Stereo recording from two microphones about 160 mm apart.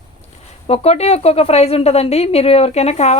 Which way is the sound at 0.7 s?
40° left (ahead or behind).